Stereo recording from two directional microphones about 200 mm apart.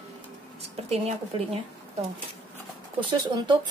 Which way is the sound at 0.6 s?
30° right (ahead or behind).